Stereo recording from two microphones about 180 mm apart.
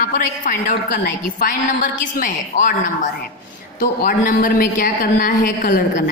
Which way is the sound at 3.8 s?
50° left (ahead or behind).